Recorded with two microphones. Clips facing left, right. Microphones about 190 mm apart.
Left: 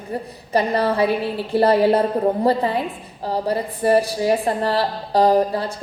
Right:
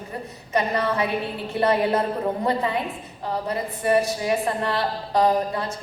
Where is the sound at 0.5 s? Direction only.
35° left (ahead or behind).